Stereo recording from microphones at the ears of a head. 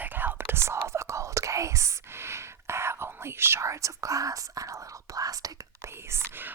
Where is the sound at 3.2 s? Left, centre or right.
Right.